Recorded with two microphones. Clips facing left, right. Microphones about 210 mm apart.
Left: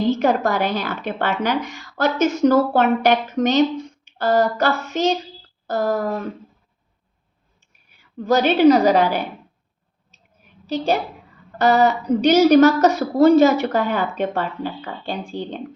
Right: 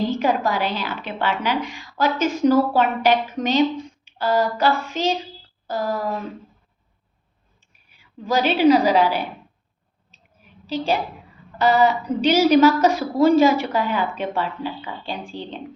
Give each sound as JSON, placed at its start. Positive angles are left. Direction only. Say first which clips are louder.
{"t": 0.1, "sound": "speech", "louder": "left 3 dB", "side_deg": 45}
{"t": 7.9, "sound": "speech", "louder": "left 4 dB", "side_deg": 40}
{"t": 11.6, "sound": "speech", "louder": "left 1 dB", "side_deg": 45}